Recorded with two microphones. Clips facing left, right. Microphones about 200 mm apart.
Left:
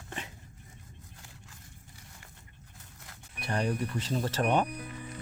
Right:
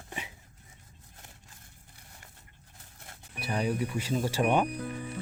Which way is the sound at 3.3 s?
5° right (ahead or behind).